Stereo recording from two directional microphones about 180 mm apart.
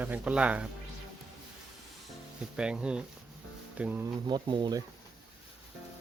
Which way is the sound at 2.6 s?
5° right (ahead or behind).